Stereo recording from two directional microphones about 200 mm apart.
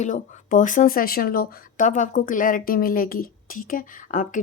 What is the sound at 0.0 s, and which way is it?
Speech, 40° left (ahead or behind).